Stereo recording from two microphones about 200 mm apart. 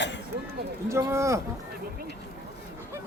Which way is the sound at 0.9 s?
15° right (ahead or behind).